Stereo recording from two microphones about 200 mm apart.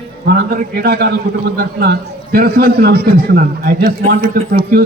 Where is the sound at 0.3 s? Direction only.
50° right (ahead or behind).